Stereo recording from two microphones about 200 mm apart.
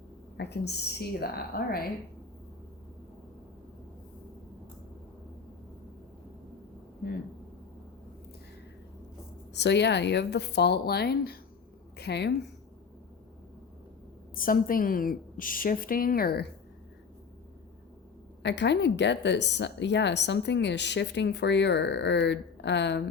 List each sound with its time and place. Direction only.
0.3 s a woman's voice: 55° left (ahead or behind)
9.5 s a woman's voice: 60° left (ahead or behind)
14.3 s a woman's voice: 45° left (ahead or behind)
18.4 s a woman's voice: 60° left (ahead or behind)